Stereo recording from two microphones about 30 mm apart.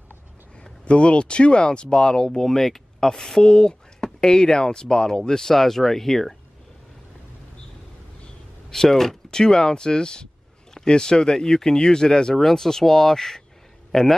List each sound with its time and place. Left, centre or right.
0.8 s speech: left; by 3.4 s centre
3.4 s speech: left
5.5 s speech: centre
8.6 s speech: centre